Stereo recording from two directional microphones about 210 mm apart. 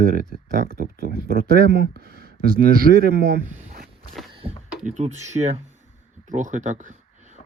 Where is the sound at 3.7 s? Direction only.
35° right (ahead or behind).